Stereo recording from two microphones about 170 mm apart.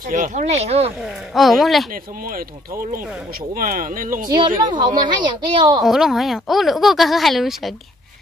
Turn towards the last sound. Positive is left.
turn(degrees=0)  # may be behind; listen again after turning